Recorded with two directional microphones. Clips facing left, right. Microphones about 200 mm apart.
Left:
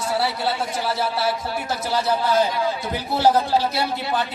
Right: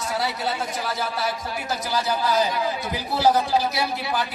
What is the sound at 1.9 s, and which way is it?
Speech, 30° left (ahead or behind).